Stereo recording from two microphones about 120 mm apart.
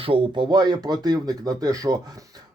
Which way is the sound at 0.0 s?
45° right (ahead or behind).